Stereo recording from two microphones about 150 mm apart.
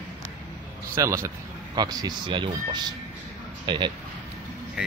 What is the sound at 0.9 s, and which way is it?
Speech, 20° right (ahead or behind).